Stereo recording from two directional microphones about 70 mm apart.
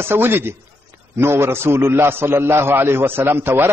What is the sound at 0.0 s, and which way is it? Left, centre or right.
A man's voice, right.